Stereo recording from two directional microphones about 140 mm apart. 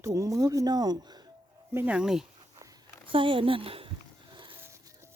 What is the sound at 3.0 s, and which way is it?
Speech, 40° right (ahead or behind).